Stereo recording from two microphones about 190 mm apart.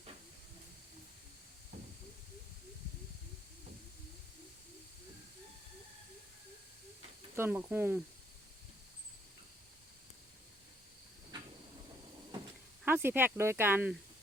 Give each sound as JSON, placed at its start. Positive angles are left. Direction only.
{"t": 7.3, "sound": "speech", "side_deg": -10}
{"t": 12.8, "sound": "speech", "side_deg": -10}